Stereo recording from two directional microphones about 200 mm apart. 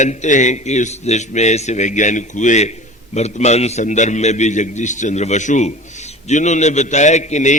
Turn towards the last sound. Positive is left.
turn(degrees=35)  # may be behind; listen again after turning